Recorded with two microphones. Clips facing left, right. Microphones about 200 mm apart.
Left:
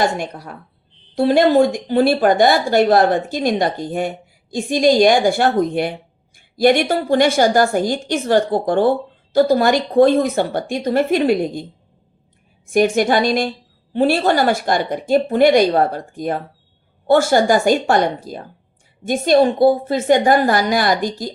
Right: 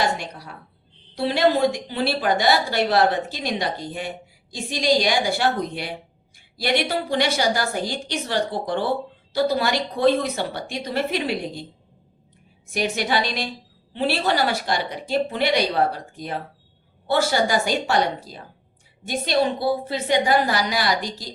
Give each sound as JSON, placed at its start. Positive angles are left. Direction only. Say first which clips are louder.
{"t": 0.0, "sound": "a woman's voice", "louder": "left 5 dB", "side_deg": 50}
{"t": 12.7, "sound": "a woman's voice", "louder": "left 9 dB", "side_deg": 50}